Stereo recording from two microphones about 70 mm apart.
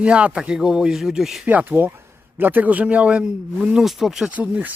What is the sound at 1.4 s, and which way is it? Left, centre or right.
Speech, right.